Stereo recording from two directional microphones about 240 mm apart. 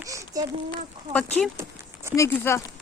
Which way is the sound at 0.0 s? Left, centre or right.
Centre.